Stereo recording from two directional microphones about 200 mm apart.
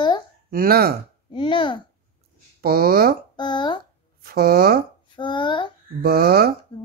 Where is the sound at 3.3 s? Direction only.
20° left (ahead or behind).